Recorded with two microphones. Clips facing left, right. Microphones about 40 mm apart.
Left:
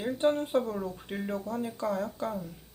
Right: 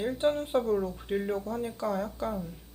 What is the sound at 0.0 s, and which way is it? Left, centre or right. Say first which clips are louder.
Speech: even; centre.